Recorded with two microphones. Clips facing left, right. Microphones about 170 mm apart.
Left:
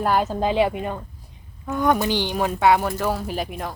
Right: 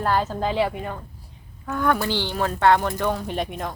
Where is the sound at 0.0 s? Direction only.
15° left (ahead or behind).